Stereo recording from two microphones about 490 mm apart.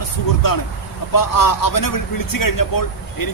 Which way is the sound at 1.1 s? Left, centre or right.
Left.